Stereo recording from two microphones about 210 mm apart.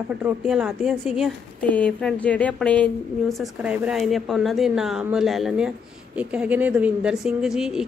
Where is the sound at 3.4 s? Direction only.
5° right (ahead or behind).